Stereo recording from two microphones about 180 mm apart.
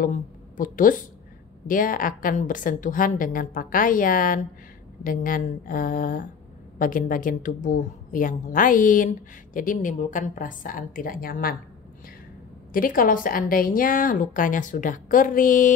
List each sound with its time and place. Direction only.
0.0 s a woman's voice: 50° left (ahead or behind)
12.7 s a woman's voice: 50° left (ahead or behind)